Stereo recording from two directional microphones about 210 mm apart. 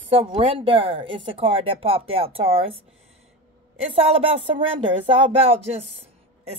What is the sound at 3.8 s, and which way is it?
Speech, 30° right (ahead or behind).